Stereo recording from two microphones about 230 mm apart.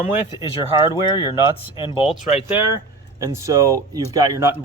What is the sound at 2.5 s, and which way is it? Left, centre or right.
Speech, centre.